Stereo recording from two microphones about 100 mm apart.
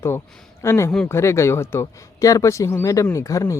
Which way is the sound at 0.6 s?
30° left (ahead or behind).